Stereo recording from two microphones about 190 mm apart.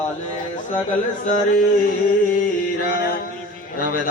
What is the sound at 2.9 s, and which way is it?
Music, 55° left (ahead or behind).